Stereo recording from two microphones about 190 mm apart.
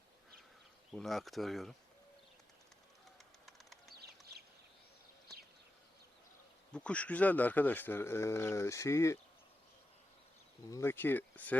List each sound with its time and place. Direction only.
0.9 s speech: centre (ahead or behind)
3.4 s bird: centre (ahead or behind)
3.9 s a sound: 55° right (ahead or behind)
6.7 s speech: 5° left (ahead or behind)
10.7 s speech: 15° left (ahead or behind)